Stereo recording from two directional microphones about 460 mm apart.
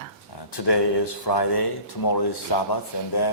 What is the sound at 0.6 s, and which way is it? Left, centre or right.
Speech, left.